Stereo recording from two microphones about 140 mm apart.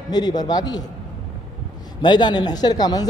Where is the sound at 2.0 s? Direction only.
30° left (ahead or behind).